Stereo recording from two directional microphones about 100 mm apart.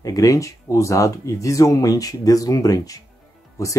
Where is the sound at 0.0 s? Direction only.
35° left (ahead or behind).